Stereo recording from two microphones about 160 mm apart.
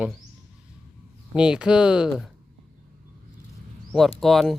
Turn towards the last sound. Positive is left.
turn(degrees=0)  # may be behind; listen again after turning